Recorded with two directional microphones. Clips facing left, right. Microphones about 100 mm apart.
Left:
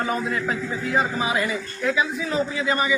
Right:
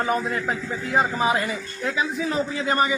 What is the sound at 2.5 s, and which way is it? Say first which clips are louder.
Speech: right 2 dB; 40° right (ahead or behind).